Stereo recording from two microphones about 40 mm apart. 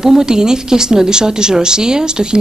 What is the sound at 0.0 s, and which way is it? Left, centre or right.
Speech, centre.